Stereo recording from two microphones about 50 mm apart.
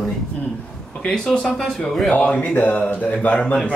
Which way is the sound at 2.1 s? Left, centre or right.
Left.